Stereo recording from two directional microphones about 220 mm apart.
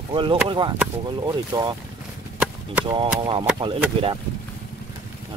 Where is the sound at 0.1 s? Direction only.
20° right (ahead or behind).